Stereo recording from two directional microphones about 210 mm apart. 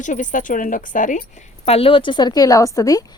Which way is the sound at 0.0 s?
35° left (ahead or behind).